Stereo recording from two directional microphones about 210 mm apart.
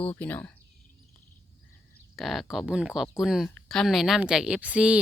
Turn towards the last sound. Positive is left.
turn(degrees=-5)  # may be behind; listen again after turning